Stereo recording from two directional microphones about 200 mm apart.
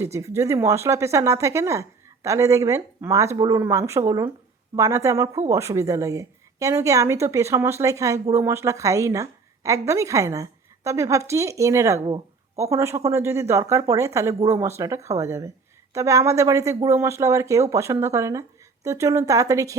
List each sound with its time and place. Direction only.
0.0 s a woman's voice: 15° right (ahead or behind)